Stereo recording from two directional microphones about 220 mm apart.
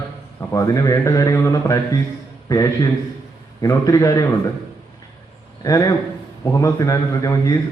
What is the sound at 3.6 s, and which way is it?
Speech, 15° left (ahead or behind).